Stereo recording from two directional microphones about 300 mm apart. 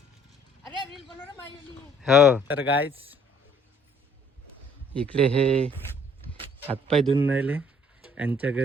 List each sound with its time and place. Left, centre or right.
0.9 s a sound: centre
2.0 s speech: centre
5.1 s speech: centre
6.8 s speech: centre